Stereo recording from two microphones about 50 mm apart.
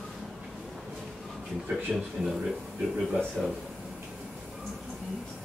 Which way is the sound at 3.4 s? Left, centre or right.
Centre.